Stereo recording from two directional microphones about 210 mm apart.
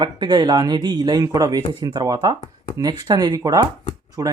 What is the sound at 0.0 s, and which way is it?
Speech, 20° right (ahead or behind).